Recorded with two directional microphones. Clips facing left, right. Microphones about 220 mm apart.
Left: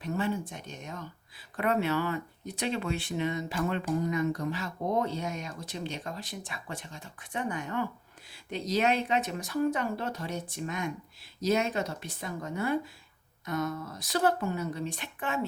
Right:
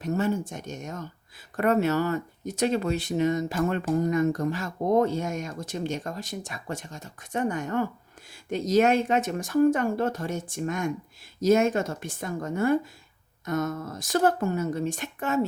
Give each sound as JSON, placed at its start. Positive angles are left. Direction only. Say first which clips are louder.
{"t": 0.0, "sound": "speech", "louder": "right 5 dB", "side_deg": -45}